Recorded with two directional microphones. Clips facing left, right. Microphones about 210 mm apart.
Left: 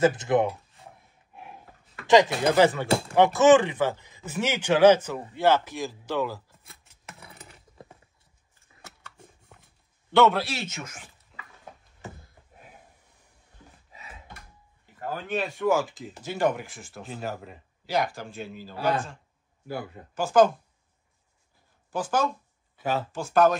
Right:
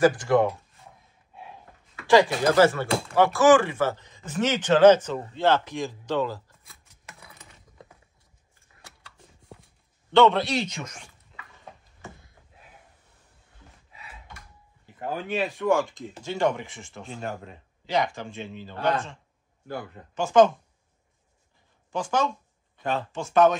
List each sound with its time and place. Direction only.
0.0 s speech: 20° left (ahead or behind)
2.0 s speech: 20° left (ahead or behind)
7.2 s a sound: 25° left (ahead or behind)
10.1 s a man's voice: 5° left (ahead or behind)
11.3 s a sound: centre (ahead or behind)
15.3 s a man's voice: centre (ahead or behind)
21.9 s speech: 5° left (ahead or behind)